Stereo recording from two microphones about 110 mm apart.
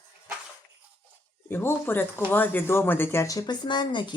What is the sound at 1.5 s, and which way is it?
Speech, 20° left (ahead or behind).